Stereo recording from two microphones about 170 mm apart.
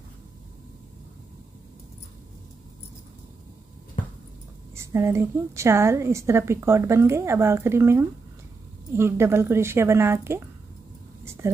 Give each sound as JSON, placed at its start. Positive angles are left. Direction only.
{"t": 4.7, "sound": "a woman's voice", "side_deg": -15}
{"t": 11.4, "sound": "a woman's voice", "side_deg": -15}